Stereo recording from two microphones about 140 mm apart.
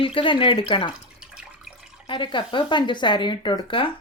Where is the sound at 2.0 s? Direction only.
35° left (ahead or behind).